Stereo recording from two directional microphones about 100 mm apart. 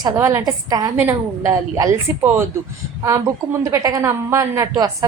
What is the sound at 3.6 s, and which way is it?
A woman's voice, 35° right (ahead or behind).